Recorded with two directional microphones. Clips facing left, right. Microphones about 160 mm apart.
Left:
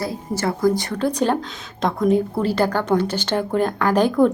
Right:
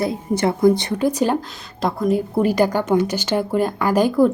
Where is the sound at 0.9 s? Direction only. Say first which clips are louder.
Right 1 dB; 10° right (ahead or behind).